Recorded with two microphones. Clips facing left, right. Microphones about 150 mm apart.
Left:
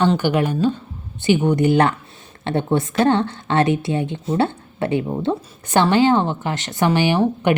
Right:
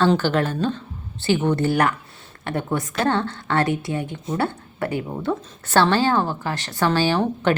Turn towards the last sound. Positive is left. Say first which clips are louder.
# left 2 dB
turn(degrees=15)  # may be behind; listen again after turning